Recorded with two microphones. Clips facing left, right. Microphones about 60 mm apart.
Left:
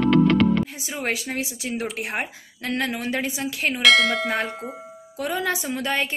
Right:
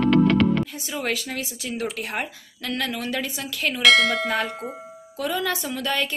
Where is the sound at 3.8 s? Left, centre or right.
Centre.